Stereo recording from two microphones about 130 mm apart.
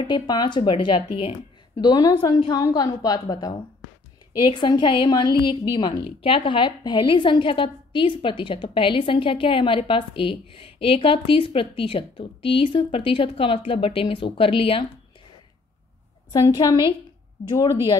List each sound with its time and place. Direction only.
0.0 s a woman's voice: 35° left (ahead or behind)
16.3 s a woman's voice: 30° left (ahead or behind)